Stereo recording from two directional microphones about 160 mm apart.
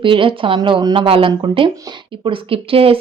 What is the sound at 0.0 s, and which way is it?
A woman's voice, 30° right (ahead or behind).